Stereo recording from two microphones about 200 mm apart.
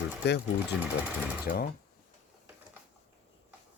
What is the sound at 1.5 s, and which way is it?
Speech, 45° left (ahead or behind).